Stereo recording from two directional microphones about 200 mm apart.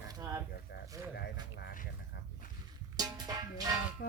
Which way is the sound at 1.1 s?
55° left (ahead or behind).